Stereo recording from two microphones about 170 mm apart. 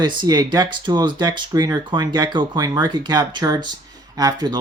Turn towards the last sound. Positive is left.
turn(degrees=-20)  # may be behind; listen again after turning